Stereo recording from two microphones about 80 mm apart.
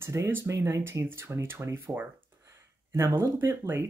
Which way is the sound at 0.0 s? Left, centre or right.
Right.